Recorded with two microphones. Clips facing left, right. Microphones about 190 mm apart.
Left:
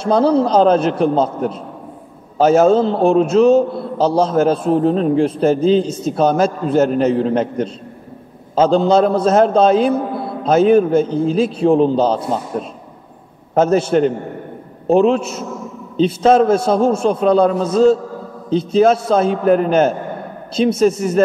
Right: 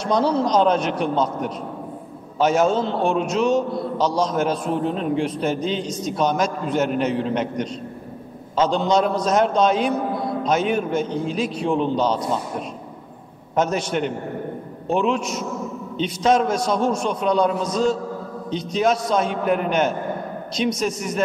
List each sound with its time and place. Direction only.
0.1 s a man's voice: 30° left (ahead or behind)
13.9 s a man's voice: 40° left (ahead or behind)